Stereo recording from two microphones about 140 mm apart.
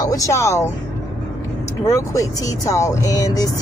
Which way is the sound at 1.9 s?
25° left (ahead or behind).